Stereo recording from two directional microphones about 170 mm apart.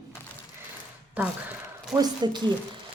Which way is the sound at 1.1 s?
10° right (ahead or behind).